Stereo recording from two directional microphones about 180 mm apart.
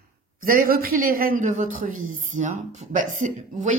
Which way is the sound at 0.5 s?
50° right (ahead or behind).